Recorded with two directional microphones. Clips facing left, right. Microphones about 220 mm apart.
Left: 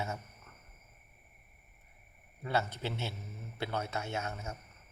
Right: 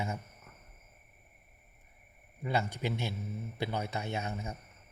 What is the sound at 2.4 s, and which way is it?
Speech, 15° right (ahead or behind).